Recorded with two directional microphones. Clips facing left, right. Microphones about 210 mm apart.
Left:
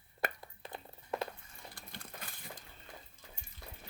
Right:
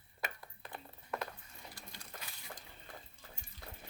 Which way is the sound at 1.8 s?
50° left (ahead or behind).